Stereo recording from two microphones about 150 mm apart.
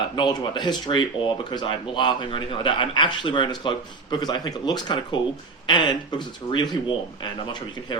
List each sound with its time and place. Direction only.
0.2 s a man's voice: 30° left (ahead or behind)